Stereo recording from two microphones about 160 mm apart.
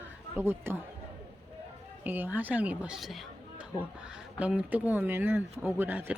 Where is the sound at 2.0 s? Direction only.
10° right (ahead or behind).